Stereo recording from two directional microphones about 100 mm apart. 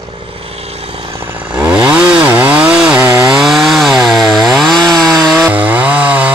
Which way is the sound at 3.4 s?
5° right (ahead or behind).